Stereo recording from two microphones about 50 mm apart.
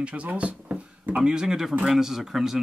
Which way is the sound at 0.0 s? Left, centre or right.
Right.